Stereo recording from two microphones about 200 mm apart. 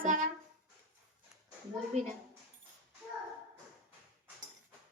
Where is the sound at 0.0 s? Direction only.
40° right (ahead or behind).